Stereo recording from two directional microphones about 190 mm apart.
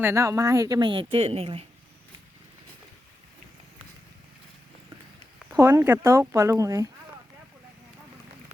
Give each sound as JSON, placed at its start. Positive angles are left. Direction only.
{"t": 0.0, "sound": "speech", "side_deg": -15}
{"t": 5.5, "sound": "speech", "side_deg": -15}